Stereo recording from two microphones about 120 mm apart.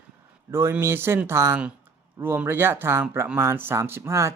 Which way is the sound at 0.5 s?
20° right (ahead or behind).